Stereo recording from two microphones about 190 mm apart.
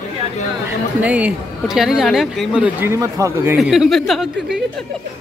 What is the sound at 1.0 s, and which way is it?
Speech, 5° right (ahead or behind).